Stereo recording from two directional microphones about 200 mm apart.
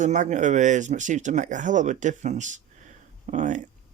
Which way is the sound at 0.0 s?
35° right (ahead or behind).